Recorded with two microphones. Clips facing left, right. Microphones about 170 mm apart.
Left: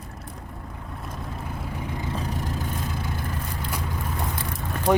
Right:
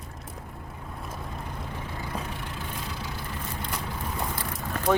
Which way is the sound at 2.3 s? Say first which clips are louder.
Left 6 dB; 40° left (ahead or behind).